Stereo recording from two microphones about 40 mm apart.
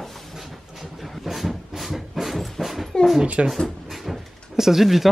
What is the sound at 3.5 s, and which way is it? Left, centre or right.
Drawer open or close, centre.